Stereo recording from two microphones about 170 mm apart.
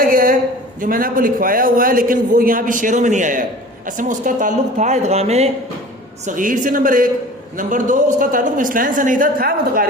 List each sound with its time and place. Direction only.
0.0 s a sound: 55° right (ahead or behind)
0.8 s a man's voice: 55° right (ahead or behind); by 5.5 s 40° right (ahead or behind)
6.2 s a man's voice: 50° right (ahead or behind)